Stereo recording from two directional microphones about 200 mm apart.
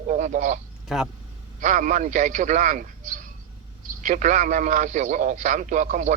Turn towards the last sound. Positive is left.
turn(degrees=-40)  # may be behind; listen again after turning